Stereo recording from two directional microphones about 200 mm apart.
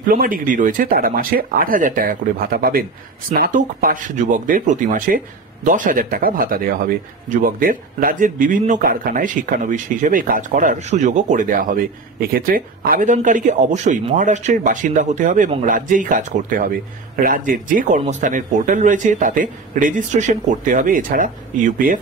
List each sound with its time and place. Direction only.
0.0 s speech: 45° right (ahead or behind)